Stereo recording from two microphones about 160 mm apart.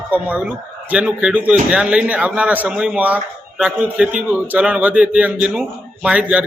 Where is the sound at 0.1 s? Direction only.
10° right (ahead or behind).